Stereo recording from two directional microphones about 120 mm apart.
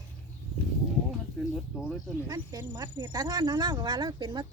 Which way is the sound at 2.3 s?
30° right (ahead or behind).